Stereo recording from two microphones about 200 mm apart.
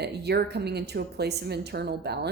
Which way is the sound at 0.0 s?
55° right (ahead or behind).